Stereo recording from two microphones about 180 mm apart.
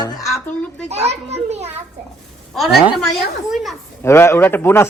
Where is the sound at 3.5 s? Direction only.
Centre (ahead or behind).